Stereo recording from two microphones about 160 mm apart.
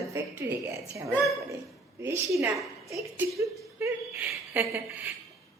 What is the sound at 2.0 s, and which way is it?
Speech, 15° right (ahead or behind).